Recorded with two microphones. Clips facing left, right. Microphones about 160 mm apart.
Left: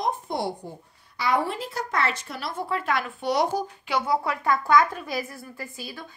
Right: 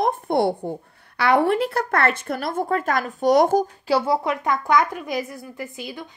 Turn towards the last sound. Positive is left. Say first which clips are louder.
# right 5 dB
turn(degrees=-20)  # may be behind; listen again after turning